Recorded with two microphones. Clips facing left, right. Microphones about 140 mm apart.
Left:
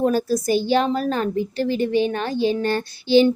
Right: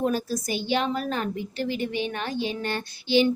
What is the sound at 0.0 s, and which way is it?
A woman's voice, 40° left (ahead or behind).